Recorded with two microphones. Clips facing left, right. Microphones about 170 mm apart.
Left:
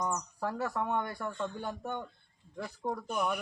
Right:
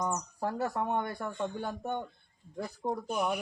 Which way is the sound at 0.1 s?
20° right (ahead or behind).